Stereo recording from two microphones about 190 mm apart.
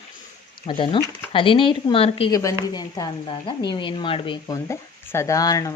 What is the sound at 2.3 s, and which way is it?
Speech, 20° left (ahead or behind).